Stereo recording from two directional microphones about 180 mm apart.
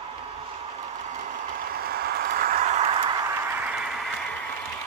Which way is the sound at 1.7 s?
60° right (ahead or behind).